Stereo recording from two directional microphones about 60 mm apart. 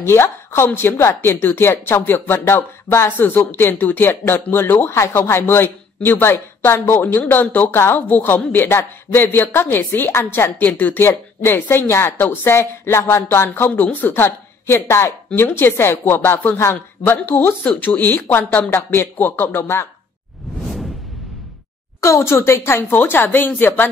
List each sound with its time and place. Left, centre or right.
0.0 s a woman's voice: left
22.0 s a woman's voice: left